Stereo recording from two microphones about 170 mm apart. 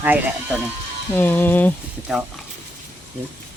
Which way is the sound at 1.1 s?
10° left (ahead or behind).